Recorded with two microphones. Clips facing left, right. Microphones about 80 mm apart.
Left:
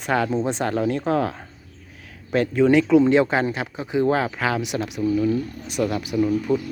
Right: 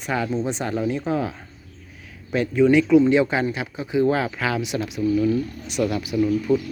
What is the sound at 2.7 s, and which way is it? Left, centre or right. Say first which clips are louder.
Speech: left 1 dB; left.